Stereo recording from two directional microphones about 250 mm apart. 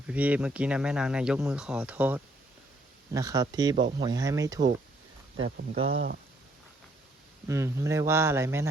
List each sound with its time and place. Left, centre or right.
0.1 s speech: centre
5.9 s speech: right
7.4 s speech: centre